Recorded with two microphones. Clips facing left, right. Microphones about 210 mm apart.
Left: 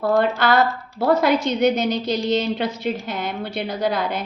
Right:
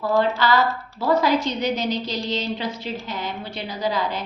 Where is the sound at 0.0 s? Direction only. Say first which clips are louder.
Left 2 dB; 55° left (ahead or behind).